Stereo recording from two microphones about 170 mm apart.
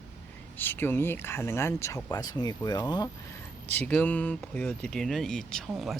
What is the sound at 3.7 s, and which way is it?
Speech, 10° left (ahead or behind).